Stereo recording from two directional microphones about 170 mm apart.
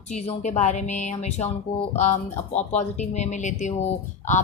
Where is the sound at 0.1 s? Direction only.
40° left (ahead or behind).